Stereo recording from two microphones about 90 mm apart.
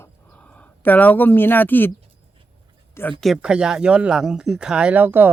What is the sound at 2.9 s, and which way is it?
Speech, 25° left (ahead or behind).